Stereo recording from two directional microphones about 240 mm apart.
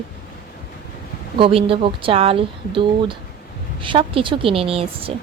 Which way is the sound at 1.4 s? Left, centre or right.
Right.